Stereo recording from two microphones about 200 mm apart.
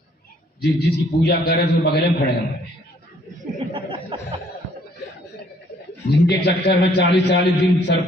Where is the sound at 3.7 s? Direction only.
25° right (ahead or behind).